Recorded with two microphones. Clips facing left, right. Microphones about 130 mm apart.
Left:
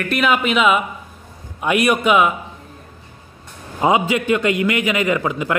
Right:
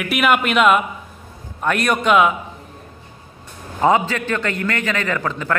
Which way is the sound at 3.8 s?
15° left (ahead or behind).